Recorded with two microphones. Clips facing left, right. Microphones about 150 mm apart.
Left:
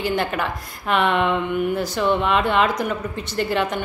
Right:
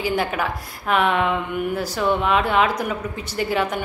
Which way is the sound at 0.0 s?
5° right (ahead or behind).